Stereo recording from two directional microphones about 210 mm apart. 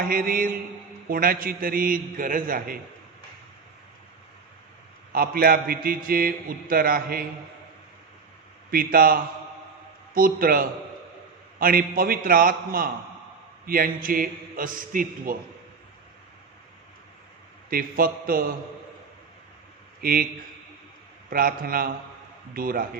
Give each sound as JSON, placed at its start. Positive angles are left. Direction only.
{"t": 0.0, "sound": "a man's voice", "side_deg": -45}
{"t": 5.1, "sound": "a man's voice", "side_deg": -45}
{"t": 8.7, "sound": "a man's voice", "side_deg": -45}
{"t": 10.2, "sound": "a man's voice", "side_deg": -45}
{"t": 17.7, "sound": "a man's voice", "side_deg": -45}
{"t": 20.0, "sound": "speech", "side_deg": -45}
{"t": 21.2, "sound": "a man's voice", "side_deg": -45}